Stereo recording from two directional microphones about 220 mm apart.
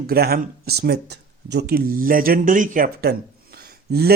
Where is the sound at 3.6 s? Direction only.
45° right (ahead or behind).